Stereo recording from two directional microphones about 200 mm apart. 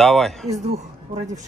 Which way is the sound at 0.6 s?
35° right (ahead or behind).